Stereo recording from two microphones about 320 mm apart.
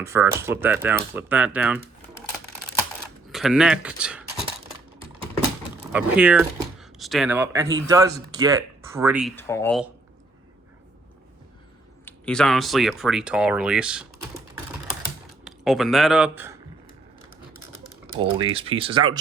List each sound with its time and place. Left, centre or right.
0.0 s speech: centre
3.3 s speech: centre
5.9 s speech: centre
12.0 s speech: centre
15.4 s speech: centre
18.0 s speech: centre